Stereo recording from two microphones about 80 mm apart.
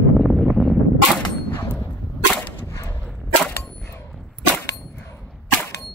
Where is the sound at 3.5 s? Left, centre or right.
Left.